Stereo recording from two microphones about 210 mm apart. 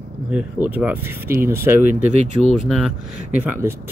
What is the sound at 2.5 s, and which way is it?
Speech, centre (ahead or behind).